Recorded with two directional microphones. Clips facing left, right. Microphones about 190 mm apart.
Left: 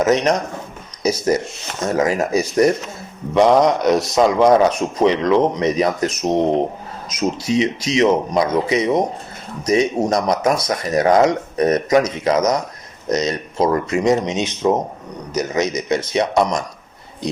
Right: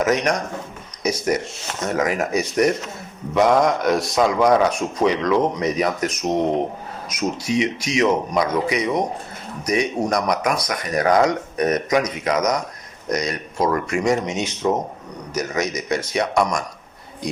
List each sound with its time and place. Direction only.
0.0 s speech: 30° left (ahead or behind)